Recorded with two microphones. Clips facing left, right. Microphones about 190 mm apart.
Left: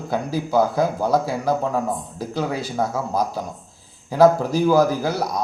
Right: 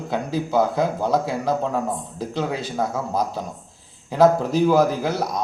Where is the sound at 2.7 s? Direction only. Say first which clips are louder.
Left 1 dB; centre (ahead or behind).